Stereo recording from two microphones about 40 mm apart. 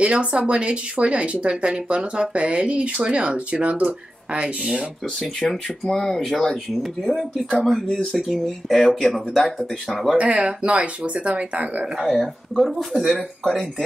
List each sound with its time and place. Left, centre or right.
0.0 s speech: right
5.9 s speech: centre
10.1 s speech: right
12.1 s speech: centre